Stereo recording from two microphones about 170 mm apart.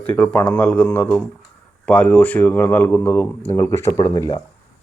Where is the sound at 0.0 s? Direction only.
10° left (ahead or behind).